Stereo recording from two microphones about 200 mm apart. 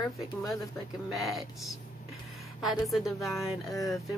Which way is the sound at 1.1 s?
Centre (ahead or behind).